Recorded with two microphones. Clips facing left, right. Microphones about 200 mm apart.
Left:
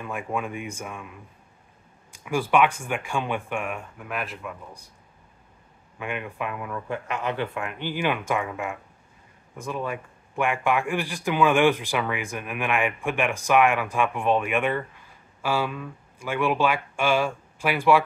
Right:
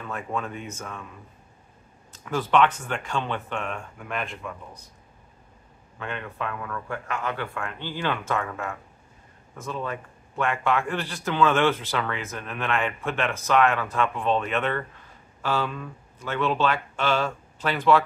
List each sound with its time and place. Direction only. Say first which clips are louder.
0.0 s a man's voice: left 1 dB; 10° left (ahead or behind)
2.1 s a man's voice: even; 10° left (ahead or behind)
5.9 s a man's voice: left 2 dB; 15° left (ahead or behind)